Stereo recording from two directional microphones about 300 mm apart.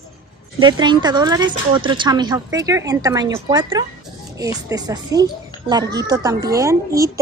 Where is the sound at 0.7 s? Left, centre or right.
Centre.